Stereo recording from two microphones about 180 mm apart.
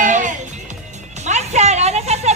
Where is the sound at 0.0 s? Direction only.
45° right (ahead or behind).